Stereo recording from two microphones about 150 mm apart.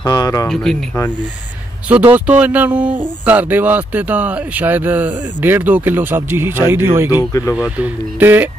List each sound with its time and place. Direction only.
0.0 s speech: 25° left (ahead or behind)
0.5 s speech: 5° left (ahead or behind)
1.9 s speech: 10° right (ahead or behind)
7.2 s speech: 20° left (ahead or behind)
7.5 s speech: 10° right (ahead or behind)